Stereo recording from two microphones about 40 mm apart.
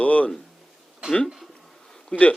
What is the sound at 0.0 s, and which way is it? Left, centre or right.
Speech, left.